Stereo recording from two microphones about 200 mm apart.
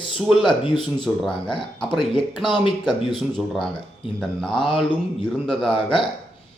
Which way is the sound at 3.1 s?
Centre (ahead or behind).